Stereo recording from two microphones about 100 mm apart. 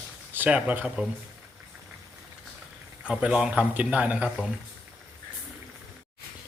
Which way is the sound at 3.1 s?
10° right (ahead or behind).